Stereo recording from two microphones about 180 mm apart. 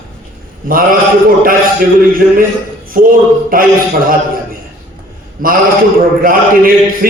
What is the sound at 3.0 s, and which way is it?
Speech, 50° right (ahead or behind).